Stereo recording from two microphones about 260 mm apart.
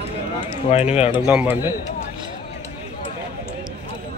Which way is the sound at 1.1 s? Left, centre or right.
Centre.